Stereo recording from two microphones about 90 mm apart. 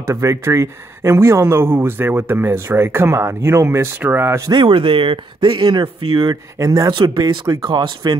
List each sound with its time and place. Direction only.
0.0 s speech: 35° right (ahead or behind)
4.5 s speech: 65° right (ahead or behind)
6.6 s speech: 40° right (ahead or behind)
6.9 s speech: 60° right (ahead or behind)